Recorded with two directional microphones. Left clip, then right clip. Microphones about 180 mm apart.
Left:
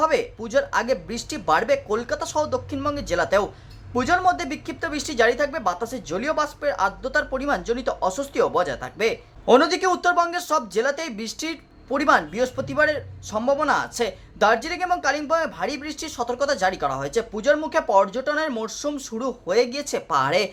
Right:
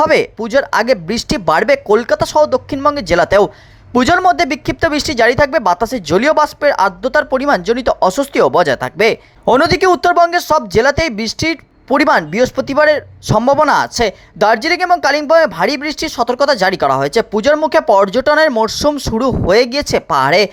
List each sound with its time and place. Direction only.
0.0 s speech: 45° right (ahead or behind)